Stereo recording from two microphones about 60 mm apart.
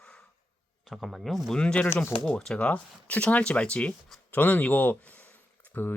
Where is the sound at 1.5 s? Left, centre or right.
Centre.